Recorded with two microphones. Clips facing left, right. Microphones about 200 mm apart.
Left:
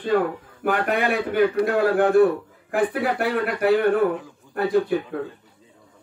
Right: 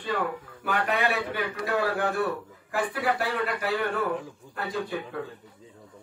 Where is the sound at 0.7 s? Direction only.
50° left (ahead or behind).